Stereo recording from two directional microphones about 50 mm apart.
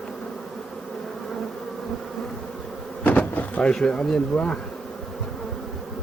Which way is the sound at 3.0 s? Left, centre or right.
Left.